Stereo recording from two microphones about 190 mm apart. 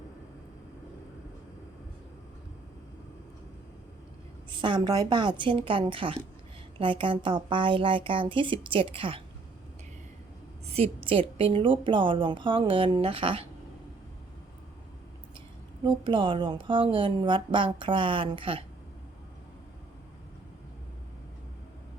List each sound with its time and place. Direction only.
4.5 s a woman's voice: 25° right (ahead or behind)
10.7 s a woman's voice: 30° right (ahead or behind)
16.0 s a woman's voice: 25° right (ahead or behind)